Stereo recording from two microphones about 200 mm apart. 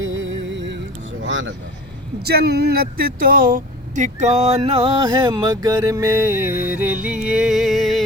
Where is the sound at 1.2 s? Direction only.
70° right (ahead or behind).